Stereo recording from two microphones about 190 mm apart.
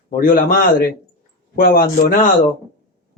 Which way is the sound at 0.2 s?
45° left (ahead or behind).